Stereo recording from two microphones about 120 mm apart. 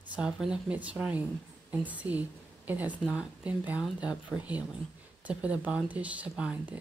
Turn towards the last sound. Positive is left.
turn(degrees=-10)  # may be behind; listen again after turning